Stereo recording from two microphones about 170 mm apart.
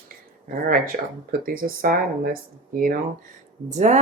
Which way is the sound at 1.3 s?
55° right (ahead or behind).